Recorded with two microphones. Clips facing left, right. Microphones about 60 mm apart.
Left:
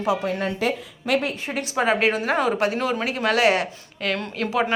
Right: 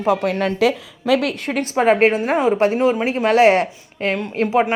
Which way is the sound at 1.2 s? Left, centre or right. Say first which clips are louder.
Right 4 dB; right.